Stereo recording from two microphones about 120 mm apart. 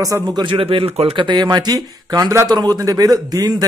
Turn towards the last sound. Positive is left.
turn(degrees=-35)  # may be behind; listen again after turning